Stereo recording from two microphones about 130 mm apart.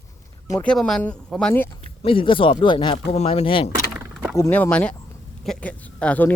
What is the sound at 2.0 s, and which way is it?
Speech, 40° left (ahead or behind).